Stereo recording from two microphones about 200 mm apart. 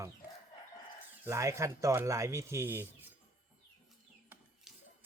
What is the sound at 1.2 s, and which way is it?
Speech, 15° right (ahead or behind).